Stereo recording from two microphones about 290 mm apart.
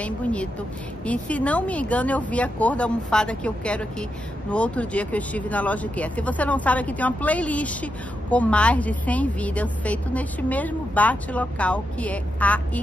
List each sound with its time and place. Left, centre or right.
0.0 s speech: centre